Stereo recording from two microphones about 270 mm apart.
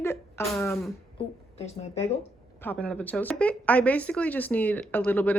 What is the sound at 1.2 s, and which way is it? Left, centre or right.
Speech, left.